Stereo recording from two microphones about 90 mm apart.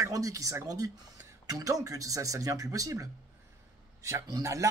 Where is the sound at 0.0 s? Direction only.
40° right (ahead or behind).